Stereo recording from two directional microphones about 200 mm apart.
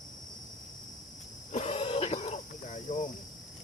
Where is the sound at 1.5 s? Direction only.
30° left (ahead or behind).